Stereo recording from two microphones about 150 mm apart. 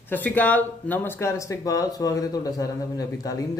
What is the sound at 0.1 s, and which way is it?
Speech, 10° left (ahead or behind).